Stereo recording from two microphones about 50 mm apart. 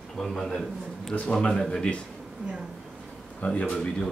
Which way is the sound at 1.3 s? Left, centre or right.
Left.